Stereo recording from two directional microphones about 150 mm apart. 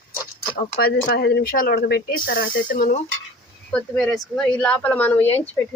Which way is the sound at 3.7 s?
5° left (ahead or behind).